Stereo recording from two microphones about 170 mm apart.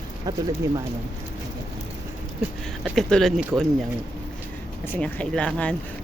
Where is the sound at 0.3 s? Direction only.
20° right (ahead or behind).